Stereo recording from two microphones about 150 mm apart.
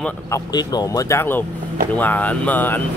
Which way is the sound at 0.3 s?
25° left (ahead or behind).